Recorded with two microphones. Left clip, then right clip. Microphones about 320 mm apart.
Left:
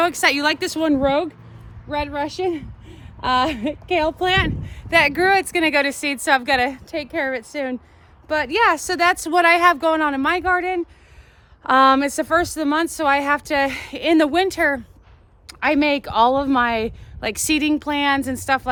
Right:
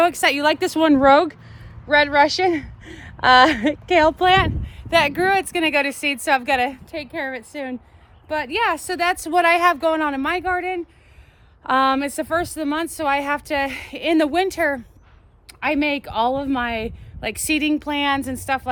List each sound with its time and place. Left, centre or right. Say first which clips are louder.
0.0 s speech: right 1 dB; centre
0.5 s speech: right 3 dB; centre
4.6 s speech: left 1 dB; centre